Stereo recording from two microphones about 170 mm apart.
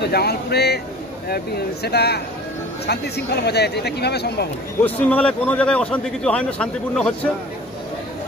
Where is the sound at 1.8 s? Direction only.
75° left (ahead or behind).